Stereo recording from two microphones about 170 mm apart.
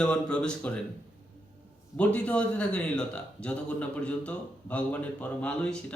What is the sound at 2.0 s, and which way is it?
Speech, 10° left (ahead or behind).